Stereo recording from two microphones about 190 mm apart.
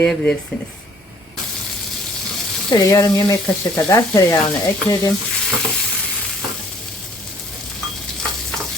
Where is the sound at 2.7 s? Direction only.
20° left (ahead or behind).